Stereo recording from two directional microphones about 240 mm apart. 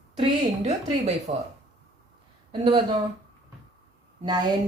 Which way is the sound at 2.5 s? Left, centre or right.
Centre.